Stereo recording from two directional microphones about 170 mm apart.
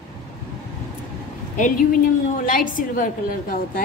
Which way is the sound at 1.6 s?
50° left (ahead or behind).